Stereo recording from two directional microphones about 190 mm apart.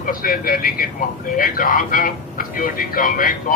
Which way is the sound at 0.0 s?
50° left (ahead or behind).